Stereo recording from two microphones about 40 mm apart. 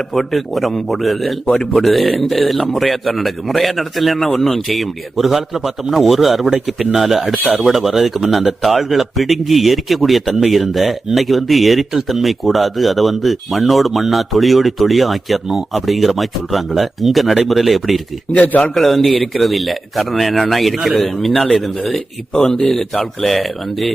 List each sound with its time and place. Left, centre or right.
0.1 s speech: centre
4.3 s speech: centre
18.3 s speech: left
18.7 s speech: centre